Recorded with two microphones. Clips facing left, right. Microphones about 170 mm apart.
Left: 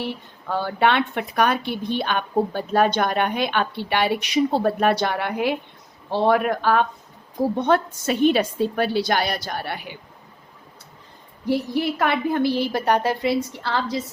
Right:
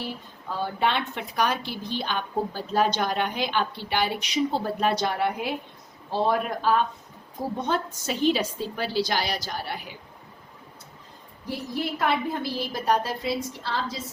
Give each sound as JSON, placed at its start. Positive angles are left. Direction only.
{"t": 0.0, "sound": "a woman's voice", "side_deg": 70}
{"t": 11.4, "sound": "a woman's voice", "side_deg": 70}